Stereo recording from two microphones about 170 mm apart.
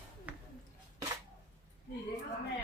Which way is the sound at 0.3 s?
10° right (ahead or behind).